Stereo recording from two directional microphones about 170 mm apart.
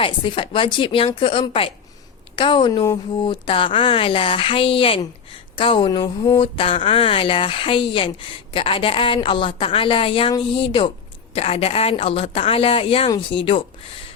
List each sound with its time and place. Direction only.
0.0 s speech: 30° left (ahead or behind)